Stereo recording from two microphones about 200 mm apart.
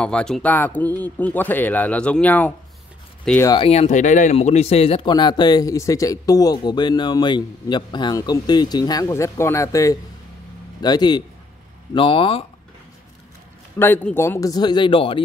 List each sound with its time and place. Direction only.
0.0 s speech: 5° left (ahead or behind)
3.4 s speech: 25° left (ahead or behind)
13.7 s speech: 10° left (ahead or behind); by 15.2 s 25° left (ahead or behind)